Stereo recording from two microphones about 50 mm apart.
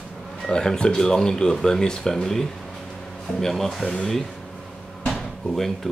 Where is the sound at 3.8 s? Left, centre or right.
Centre.